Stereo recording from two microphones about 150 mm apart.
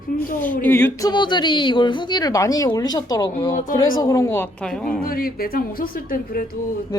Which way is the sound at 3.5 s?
65° left (ahead or behind).